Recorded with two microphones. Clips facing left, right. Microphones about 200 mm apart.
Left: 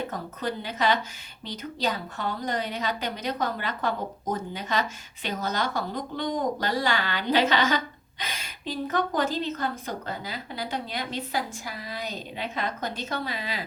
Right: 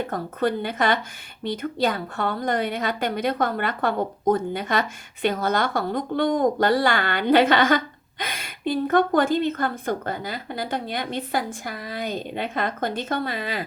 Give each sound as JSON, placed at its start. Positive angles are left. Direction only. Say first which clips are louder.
{"t": 0.1, "sound": "a woman's voice", "louder": "right 7 dB", "side_deg": -55}